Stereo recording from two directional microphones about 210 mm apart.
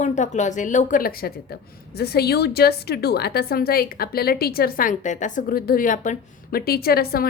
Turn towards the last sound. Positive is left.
turn(degrees=45)  # may be behind; listen again after turning